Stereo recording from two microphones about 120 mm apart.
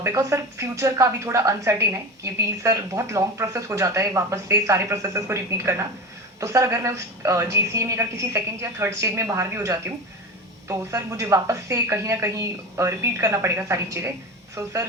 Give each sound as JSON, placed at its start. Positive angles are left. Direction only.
{"t": 0.0, "sound": "a woman's voice", "side_deg": -20}